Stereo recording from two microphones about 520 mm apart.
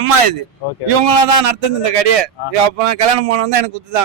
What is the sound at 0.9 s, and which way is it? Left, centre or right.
A man's voice, right.